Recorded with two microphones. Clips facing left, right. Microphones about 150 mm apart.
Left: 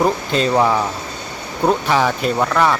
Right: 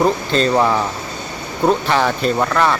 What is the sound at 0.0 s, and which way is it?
Speech, 10° left (ahead or behind).